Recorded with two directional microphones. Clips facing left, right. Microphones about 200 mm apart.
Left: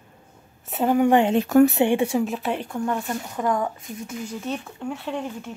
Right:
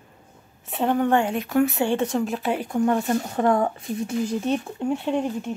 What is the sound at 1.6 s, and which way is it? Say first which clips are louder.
Speech: left 5 dB; 25° left (ahead or behind).